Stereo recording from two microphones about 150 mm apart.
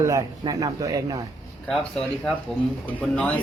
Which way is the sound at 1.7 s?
Centre (ahead or behind).